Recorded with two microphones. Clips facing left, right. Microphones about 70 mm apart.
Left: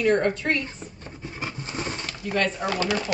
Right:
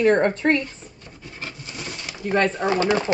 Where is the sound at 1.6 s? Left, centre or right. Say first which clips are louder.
Left 4 dB; left.